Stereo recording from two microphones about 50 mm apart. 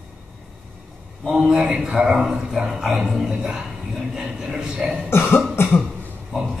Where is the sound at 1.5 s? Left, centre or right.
Centre.